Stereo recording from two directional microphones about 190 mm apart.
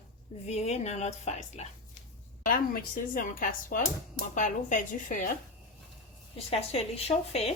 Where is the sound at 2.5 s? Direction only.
45° left (ahead or behind).